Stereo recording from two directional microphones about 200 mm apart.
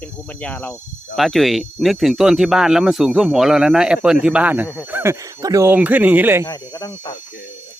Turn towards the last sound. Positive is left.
turn(degrees=20)  # may be behind; listen again after turning